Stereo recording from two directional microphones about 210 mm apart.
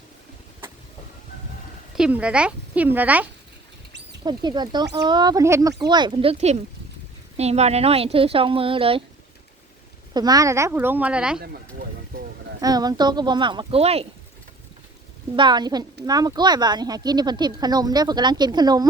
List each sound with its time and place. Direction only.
2.0 s speech: 5° right (ahead or behind)
4.2 s speech: 20° right (ahead or behind)
10.2 s speech: 15° right (ahead or behind)
12.6 s speech: 20° right (ahead or behind)
15.4 s speech: 20° right (ahead or behind)